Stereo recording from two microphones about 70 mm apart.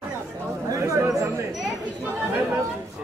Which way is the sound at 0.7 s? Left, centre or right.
Right.